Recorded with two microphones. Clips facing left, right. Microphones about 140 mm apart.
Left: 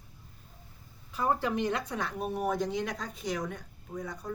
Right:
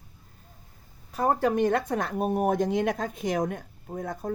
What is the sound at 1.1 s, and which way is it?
Speech, 45° right (ahead or behind).